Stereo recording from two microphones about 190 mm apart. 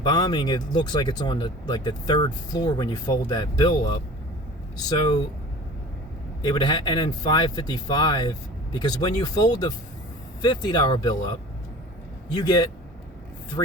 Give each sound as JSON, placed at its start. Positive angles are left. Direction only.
{"t": 0.0, "sound": "speech", "side_deg": 20}
{"t": 4.9, "sound": "speech", "side_deg": 20}
{"t": 6.4, "sound": "speech", "side_deg": 20}
{"t": 12.4, "sound": "speech", "side_deg": 20}